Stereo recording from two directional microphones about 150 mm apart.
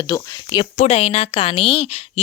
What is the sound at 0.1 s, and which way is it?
Speech, 30° left (ahead or behind).